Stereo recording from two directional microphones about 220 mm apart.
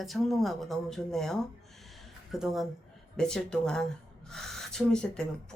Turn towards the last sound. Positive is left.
turn(degrees=5)  # may be behind; listen again after turning